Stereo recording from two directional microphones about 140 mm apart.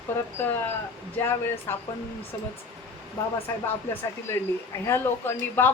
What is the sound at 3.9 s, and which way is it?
Speech, 20° left (ahead or behind).